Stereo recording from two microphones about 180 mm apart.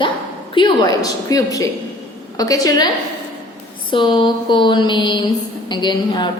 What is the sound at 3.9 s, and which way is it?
A woman's voice, 25° left (ahead or behind).